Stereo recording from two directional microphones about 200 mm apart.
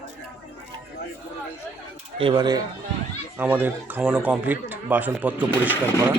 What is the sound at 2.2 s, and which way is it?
Speech, 25° right (ahead or behind).